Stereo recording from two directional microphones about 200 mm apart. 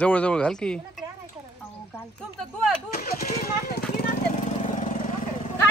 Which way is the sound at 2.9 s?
45° left (ahead or behind).